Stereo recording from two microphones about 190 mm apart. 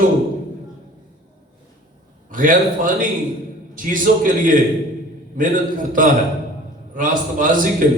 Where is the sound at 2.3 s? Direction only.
45° right (ahead or behind).